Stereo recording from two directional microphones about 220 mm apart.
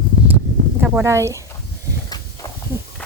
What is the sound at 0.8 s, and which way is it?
Speech, 10° right (ahead or behind).